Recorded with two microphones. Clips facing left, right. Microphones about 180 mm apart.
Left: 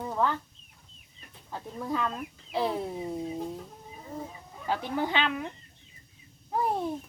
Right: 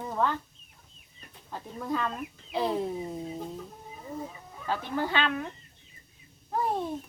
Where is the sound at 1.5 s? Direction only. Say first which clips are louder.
Even; centre (ahead or behind).